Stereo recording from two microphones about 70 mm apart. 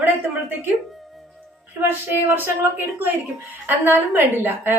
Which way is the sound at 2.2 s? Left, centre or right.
Right.